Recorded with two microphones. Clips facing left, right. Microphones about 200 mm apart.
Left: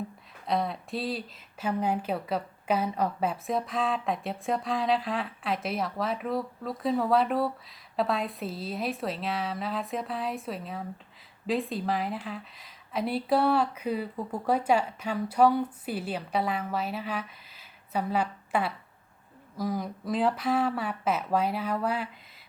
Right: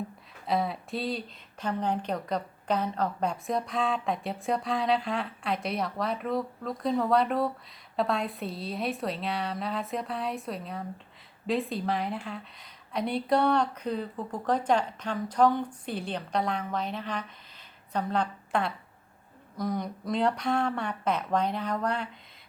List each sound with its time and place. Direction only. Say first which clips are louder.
0.4 s a woman's voice: even; centre (ahead or behind)